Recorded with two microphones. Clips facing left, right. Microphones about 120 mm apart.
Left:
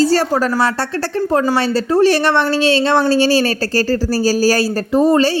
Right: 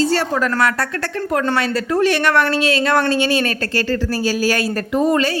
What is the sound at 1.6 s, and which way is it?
Speech, 35° left (ahead or behind).